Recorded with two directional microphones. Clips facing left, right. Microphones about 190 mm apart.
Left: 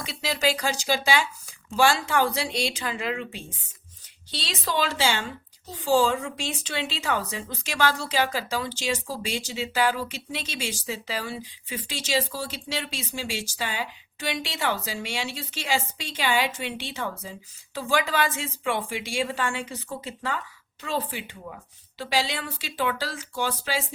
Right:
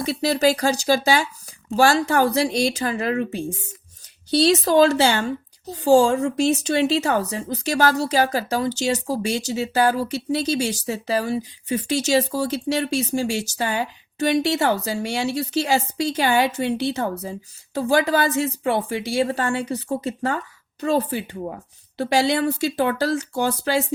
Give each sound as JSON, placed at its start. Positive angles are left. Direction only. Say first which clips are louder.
{"t": 0.0, "sound": "a woman's voice", "louder": "right 8 dB", "side_deg": -40}
{"t": 4.5, "sound": "a woman's voice", "louder": "right 7 dB", "side_deg": -45}